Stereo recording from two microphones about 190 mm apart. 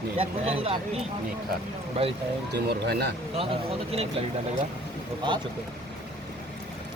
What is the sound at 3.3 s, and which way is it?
Speech, 30° right (ahead or behind).